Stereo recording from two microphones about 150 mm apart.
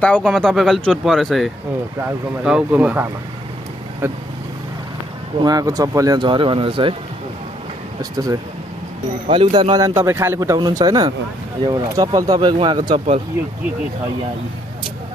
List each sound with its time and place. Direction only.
0.0 s speech: 5° left (ahead or behind); by 3.1 s 10° right (ahead or behind)
5.4 s speech: 25° right (ahead or behind)
8.0 s speech: 25° right (ahead or behind)
9.3 s speech: 35° right (ahead or behind)
12.9 s speech: 40° right (ahead or behind)